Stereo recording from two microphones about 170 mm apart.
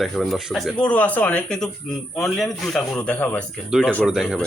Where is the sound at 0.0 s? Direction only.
Centre (ahead or behind).